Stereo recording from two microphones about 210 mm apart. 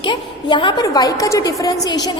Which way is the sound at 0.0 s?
20° left (ahead or behind).